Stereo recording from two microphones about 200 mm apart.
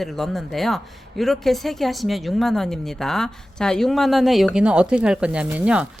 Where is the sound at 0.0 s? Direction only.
Centre (ahead or behind).